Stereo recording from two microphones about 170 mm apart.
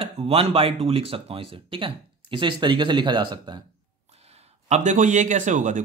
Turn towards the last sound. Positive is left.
turn(degrees=-45)  # may be behind; listen again after turning